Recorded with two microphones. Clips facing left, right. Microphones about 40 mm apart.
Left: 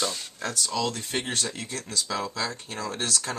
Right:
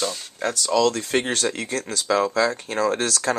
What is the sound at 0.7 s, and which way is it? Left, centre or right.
Speech, right.